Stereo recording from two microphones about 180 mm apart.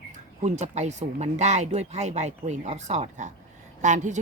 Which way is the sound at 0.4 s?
40° right (ahead or behind).